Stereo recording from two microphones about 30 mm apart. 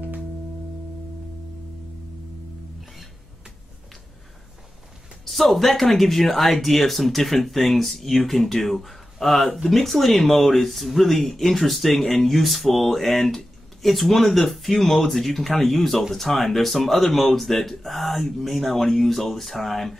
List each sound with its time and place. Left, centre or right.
5.2 s speech: centre